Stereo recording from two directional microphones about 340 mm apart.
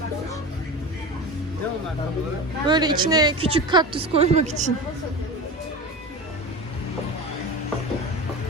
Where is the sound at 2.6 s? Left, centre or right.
Centre.